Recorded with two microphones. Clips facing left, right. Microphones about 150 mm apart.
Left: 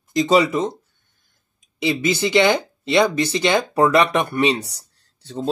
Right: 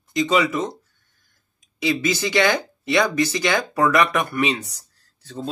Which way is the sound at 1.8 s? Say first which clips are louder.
Left 2 dB; 25° left (ahead or behind).